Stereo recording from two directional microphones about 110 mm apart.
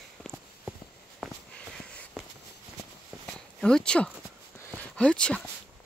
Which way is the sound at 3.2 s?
5° left (ahead or behind).